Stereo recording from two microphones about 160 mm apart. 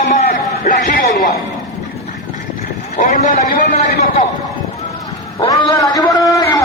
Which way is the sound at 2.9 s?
55° left (ahead or behind).